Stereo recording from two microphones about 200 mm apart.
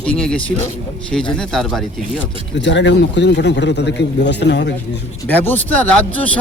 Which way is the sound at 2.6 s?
65° left (ahead or behind).